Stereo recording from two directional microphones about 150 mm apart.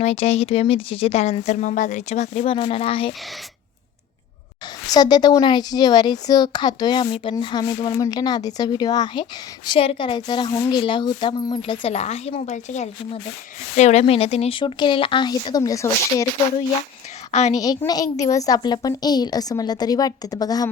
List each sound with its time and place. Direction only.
0.0 s speech: 45° left (ahead or behind)
4.9 s a woman's voice: 25° left (ahead or behind)
17.5 s speech: 25° left (ahead or behind)